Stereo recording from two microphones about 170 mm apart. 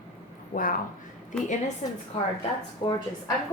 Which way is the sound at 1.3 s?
5° left (ahead or behind).